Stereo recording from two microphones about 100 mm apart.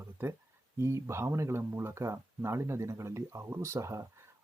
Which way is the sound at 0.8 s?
25° right (ahead or behind).